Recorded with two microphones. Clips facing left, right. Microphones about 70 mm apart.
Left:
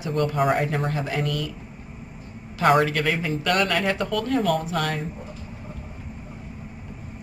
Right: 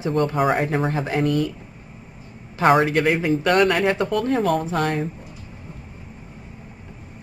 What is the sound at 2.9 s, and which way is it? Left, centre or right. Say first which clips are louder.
Speech: right 5 dB; right.